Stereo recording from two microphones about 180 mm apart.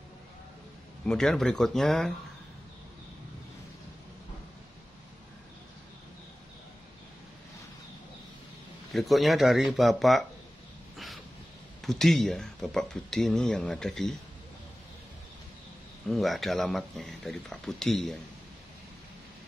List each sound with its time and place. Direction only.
1.0 s speech: 5° left (ahead or behind)
8.9 s speech: centre (ahead or behind)
11.8 s speech: centre (ahead or behind)
16.1 s speech: centre (ahead or behind)